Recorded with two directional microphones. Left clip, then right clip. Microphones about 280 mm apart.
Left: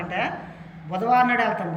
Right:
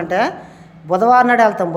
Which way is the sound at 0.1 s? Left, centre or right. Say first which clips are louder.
Right 10 dB; centre.